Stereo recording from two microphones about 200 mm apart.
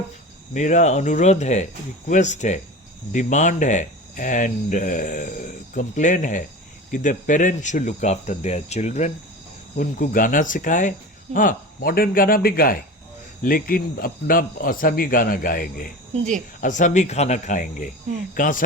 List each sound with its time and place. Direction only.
0.5 s speech: 35° left (ahead or behind)